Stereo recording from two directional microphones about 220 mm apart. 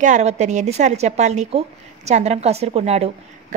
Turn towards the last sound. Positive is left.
turn(degrees=-30)  # may be behind; listen again after turning